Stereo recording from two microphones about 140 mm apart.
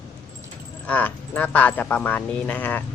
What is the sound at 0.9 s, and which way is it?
Speech, 10° left (ahead or behind).